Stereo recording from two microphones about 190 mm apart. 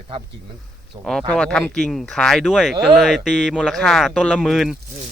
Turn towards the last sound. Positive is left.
turn(degrees=0)  # may be behind; listen again after turning